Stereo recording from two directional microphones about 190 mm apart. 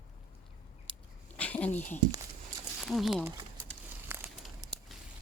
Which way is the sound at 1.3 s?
5° left (ahead or behind).